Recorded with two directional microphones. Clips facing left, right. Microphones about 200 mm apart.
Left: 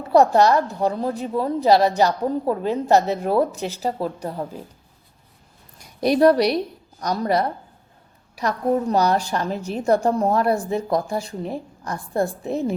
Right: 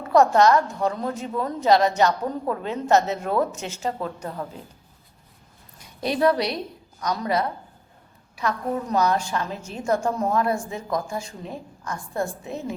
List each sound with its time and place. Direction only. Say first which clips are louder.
0.1 s a woman's voice: left 1 dB; 35° left (ahead or behind)
6.1 s a woman's voice: left 5 dB; 40° left (ahead or behind)